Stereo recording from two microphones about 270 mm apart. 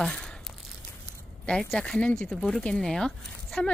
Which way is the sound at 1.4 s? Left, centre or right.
Centre.